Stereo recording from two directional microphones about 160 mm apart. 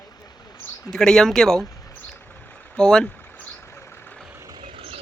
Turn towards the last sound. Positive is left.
turn(degrees=-40)  # may be behind; listen again after turning